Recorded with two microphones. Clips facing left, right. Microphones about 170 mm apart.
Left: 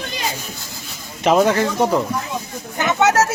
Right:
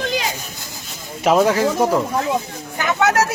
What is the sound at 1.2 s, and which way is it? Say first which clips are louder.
Speech: even; 5° right (ahead or behind).